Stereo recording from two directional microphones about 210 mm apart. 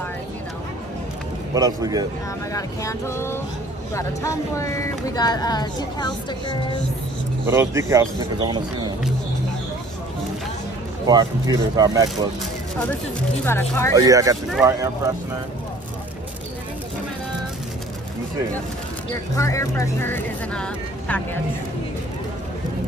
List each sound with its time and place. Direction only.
1.5 s speech: 15° right (ahead or behind)
2.5 s speech: 15° left (ahead or behind)
7.4 s speech: 15° right (ahead or behind)
11.1 s speech: 20° right (ahead or behind)
13.5 s speech: 10° left (ahead or behind)
13.9 s speech: 15° right (ahead or behind)
19.3 s speech: 15° left (ahead or behind)